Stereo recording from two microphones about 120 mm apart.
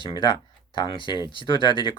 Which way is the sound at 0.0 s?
40° left (ahead or behind).